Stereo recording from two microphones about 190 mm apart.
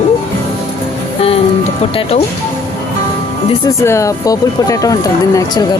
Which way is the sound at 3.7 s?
15° left (ahead or behind).